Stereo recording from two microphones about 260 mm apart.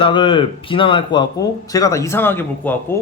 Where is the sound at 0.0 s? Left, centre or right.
Centre.